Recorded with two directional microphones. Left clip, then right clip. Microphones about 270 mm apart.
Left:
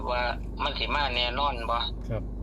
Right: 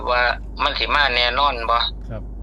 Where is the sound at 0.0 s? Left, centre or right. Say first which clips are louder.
Right 10 dB; right.